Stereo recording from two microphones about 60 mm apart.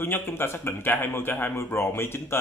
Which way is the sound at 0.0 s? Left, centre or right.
Left.